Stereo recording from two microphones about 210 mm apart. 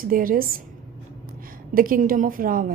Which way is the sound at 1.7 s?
40° right (ahead or behind).